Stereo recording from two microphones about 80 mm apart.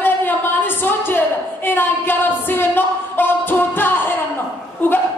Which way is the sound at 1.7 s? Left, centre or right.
Left.